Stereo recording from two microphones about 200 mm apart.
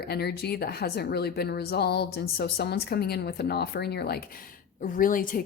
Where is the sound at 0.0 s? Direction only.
55° left (ahead or behind).